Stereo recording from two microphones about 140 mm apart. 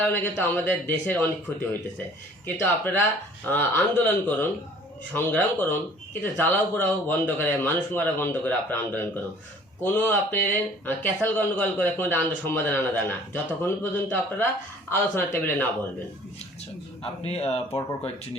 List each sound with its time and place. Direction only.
0.0 s speech: 15° left (ahead or behind)
17.0 s speech: 45° left (ahead or behind)